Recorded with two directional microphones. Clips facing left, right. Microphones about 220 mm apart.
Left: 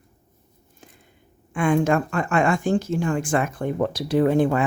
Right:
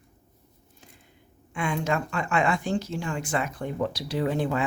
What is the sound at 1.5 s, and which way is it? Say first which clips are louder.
Speech: left 8 dB; 50° left (ahead or behind).